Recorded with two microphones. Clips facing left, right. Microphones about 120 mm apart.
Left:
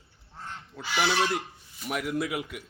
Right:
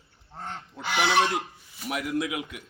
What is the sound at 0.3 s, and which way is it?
Goose, 60° right (ahead or behind).